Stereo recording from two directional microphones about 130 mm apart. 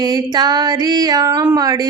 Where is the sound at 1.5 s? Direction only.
30° right (ahead or behind).